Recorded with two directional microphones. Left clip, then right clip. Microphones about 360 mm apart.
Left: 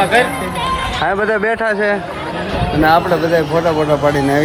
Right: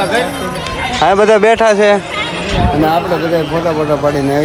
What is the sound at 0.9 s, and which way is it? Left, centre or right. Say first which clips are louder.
Speech: right 9 dB; centre.